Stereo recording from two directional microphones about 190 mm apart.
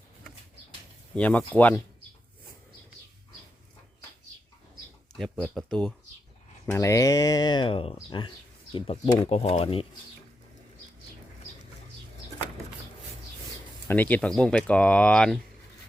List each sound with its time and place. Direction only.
1.1 s speech: 5° left (ahead or behind)
5.1 s speech: centre (ahead or behind)
6.7 s speech: 15° left (ahead or behind)
13.8 s speech: 10° left (ahead or behind)